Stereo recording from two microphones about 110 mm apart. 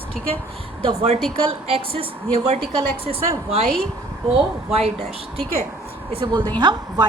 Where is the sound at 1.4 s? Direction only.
60° right (ahead or behind).